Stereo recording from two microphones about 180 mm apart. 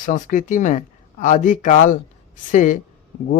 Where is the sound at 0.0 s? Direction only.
45° left (ahead or behind).